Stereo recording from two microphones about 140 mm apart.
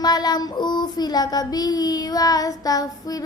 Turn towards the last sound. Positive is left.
turn(degrees=25)  # may be behind; listen again after turning